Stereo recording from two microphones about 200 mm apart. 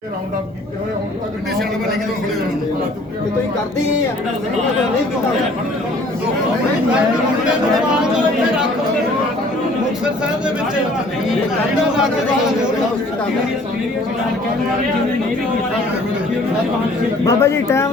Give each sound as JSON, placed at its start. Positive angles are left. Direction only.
{"t": 17.2, "sound": "speech", "side_deg": 15}